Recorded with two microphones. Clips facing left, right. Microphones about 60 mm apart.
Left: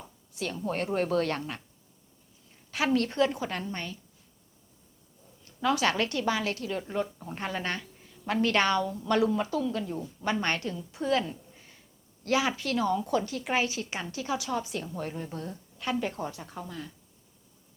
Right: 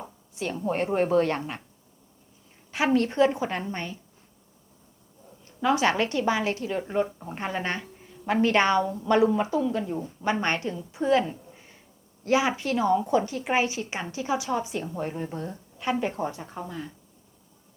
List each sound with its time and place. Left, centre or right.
0.0 s speech: right
2.7 s a woman's voice: right
5.5 s a woman's voice: right